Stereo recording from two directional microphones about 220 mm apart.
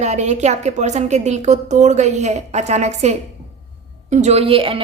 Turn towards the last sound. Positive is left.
turn(degrees=-25)  # may be behind; listen again after turning